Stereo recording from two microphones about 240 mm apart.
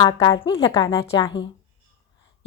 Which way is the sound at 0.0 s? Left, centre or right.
Centre.